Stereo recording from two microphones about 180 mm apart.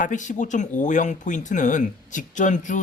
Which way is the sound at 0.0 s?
45° left (ahead or behind).